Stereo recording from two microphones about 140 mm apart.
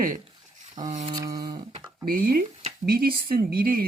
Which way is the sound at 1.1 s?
25° right (ahead or behind).